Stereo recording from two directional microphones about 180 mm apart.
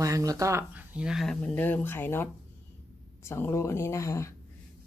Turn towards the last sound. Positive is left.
turn(degrees=15)  # may be behind; listen again after turning